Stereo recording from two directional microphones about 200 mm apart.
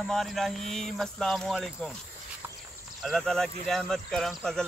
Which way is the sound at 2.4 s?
10° right (ahead or behind).